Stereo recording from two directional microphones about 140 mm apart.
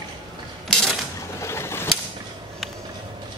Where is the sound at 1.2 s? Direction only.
20° left (ahead or behind).